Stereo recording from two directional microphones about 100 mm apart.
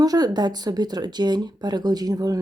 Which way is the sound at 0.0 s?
40° right (ahead or behind).